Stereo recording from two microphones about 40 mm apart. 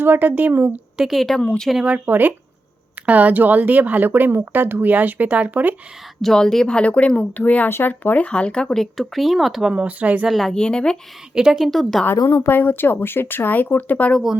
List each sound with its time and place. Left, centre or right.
0.0 s speech: right
1.1 s speech: centre
2.0 s speech: right
6.2 s a woman's voice: centre
6.8 s speech: left
8.2 s speech: left
8.8 s speech: centre
9.7 s speech: right
10.2 s speech: centre
10.5 s speech: left
11.3 s a woman's voice: centre
11.6 s speech: centre
12.0 s speech: left